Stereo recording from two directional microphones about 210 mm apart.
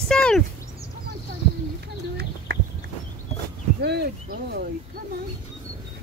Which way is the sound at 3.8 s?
50° right (ahead or behind).